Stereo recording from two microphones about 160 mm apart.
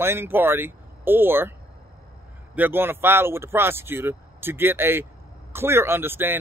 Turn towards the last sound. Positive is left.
turn(degrees=-15)  # may be behind; listen again after turning